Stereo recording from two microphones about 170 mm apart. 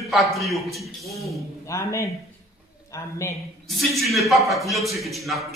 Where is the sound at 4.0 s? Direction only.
Centre (ahead or behind).